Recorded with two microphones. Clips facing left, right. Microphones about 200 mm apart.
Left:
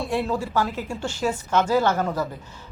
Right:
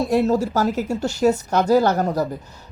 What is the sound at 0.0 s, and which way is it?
Speech, 40° right (ahead or behind).